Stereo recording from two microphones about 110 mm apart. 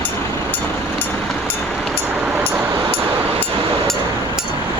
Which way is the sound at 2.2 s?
10° right (ahead or behind).